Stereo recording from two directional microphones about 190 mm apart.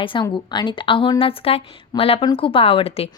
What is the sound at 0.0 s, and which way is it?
A woman's voice, 25° left (ahead or behind).